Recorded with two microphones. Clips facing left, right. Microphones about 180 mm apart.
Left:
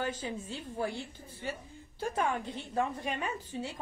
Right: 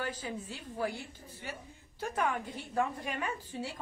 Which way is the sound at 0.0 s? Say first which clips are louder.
Left 2 dB; 25° left (ahead or behind).